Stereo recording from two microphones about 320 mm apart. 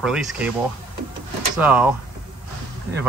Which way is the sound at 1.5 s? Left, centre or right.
Centre.